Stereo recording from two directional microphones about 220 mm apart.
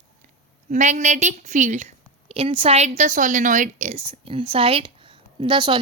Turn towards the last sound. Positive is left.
turn(degrees=-20)  # may be behind; listen again after turning